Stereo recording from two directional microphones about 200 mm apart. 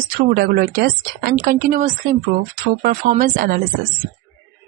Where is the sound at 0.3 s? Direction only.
45° right (ahead or behind).